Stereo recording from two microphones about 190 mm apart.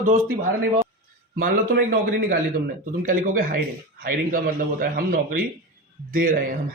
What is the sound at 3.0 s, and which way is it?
Speech, 45° right (ahead or behind).